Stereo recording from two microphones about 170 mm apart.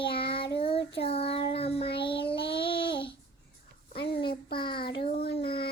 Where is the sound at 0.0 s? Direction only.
30° left (ahead or behind).